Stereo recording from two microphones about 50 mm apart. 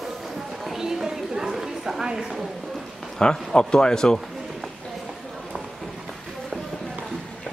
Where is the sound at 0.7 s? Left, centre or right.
Centre.